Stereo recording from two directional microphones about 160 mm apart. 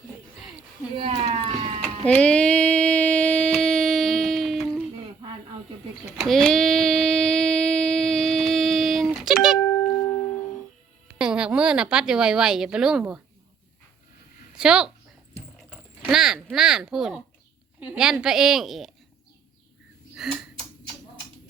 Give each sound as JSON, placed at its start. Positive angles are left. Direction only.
{"t": 0.9, "sound": "speech", "side_deg": -35}
{"t": 1.8, "sound": "music", "side_deg": 10}
{"t": 6.1, "sound": "a sound", "side_deg": 0}
{"t": 9.2, "sound": "music", "side_deg": -5}
{"t": 9.6, "sound": "music", "side_deg": 15}
{"t": 11.2, "sound": "a woman's voice", "side_deg": -5}
{"t": 14.5, "sound": "a woman's voice", "side_deg": -5}
{"t": 20.2, "sound": "a sound", "side_deg": 0}